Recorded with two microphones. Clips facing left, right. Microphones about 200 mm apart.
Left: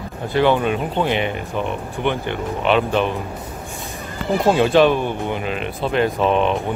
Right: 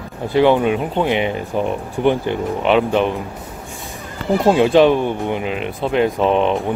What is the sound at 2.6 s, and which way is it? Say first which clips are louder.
Speech: right 2 dB; 15° right (ahead or behind).